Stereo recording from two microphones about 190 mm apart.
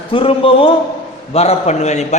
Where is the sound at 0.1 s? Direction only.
30° left (ahead or behind).